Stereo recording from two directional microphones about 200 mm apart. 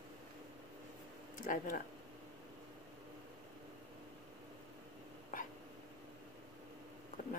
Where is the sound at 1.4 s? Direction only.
40° left (ahead or behind).